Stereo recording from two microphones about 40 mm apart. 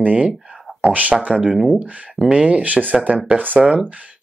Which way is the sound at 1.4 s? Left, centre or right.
Centre.